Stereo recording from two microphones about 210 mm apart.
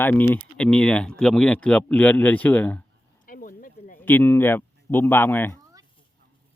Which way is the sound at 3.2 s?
40° left (ahead or behind).